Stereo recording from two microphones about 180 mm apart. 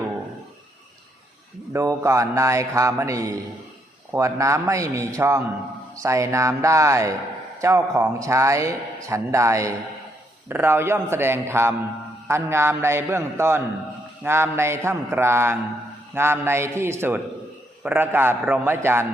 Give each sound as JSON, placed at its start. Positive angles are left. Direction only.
{"t": 1.7, "sound": "a man's voice", "side_deg": -15}